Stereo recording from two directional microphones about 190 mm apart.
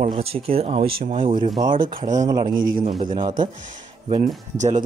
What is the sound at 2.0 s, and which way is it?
Speech, 40° right (ahead or behind).